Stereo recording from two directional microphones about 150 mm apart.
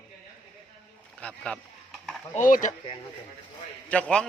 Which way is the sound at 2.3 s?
60° left (ahead or behind).